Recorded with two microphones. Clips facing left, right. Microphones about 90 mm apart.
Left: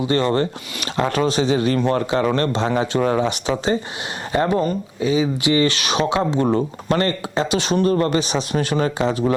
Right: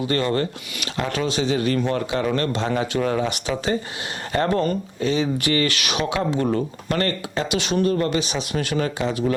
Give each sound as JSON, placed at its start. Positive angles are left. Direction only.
{"t": 0.0, "sound": "speech", "side_deg": 25}
{"t": 4.3, "sound": "speech", "side_deg": 15}
{"t": 5.4, "sound": "speech", "side_deg": 20}